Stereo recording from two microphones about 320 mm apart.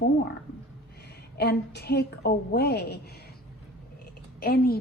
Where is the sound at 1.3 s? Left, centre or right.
Left.